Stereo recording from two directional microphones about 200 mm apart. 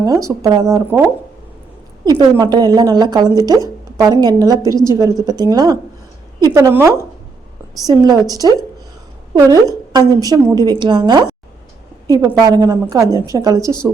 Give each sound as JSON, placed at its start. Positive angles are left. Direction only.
{"t": 0.0, "sound": "speech", "side_deg": -15}
{"t": 2.0, "sound": "speech", "side_deg": -20}